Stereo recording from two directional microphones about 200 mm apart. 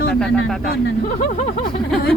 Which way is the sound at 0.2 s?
5° left (ahead or behind).